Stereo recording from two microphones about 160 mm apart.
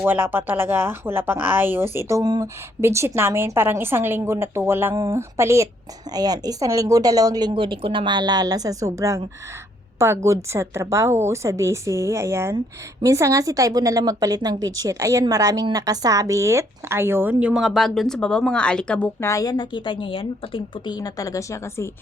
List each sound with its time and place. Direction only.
0.0 s a woman's voice: 10° right (ahead or behind); by 19.0 s 5° left (ahead or behind)
19.2 s a woman's voice: 20° left (ahead or behind)